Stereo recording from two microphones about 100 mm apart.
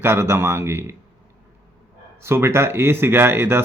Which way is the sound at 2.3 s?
25° right (ahead or behind).